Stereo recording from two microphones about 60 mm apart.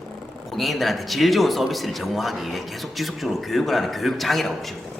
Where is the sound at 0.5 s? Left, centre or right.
Centre.